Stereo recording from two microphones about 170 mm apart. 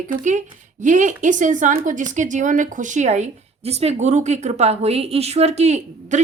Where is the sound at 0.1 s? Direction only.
45° right (ahead or behind).